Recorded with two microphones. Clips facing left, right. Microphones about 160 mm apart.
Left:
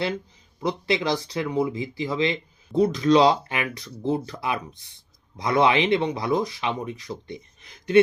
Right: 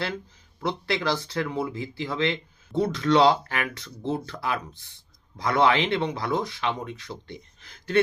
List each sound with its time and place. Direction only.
0.6 s speech: 20° left (ahead or behind)